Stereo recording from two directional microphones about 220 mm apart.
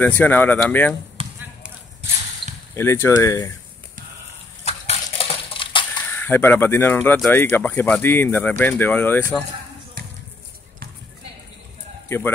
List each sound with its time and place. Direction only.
0.0 s speech: 10° left (ahead or behind)
1.2 s basketball bounce: 25° right (ahead or behind)
2.7 s speech: 10° left (ahead or behind)
4.6 s a sound: 25° left (ahead or behind)
6.1 s speech: 10° left (ahead or behind)
10.0 s basketball bounce: 40° right (ahead or behind)
12.1 s speech: 10° left (ahead or behind)